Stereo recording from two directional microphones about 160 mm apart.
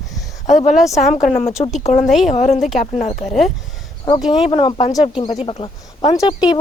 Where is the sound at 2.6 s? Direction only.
Centre (ahead or behind).